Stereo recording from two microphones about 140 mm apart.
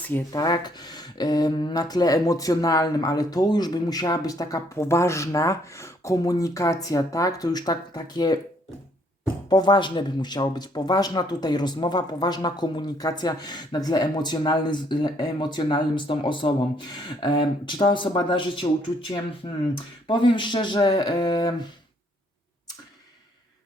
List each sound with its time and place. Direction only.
0.3 s speech: 30° left (ahead or behind)
9.5 s speech: 30° left (ahead or behind)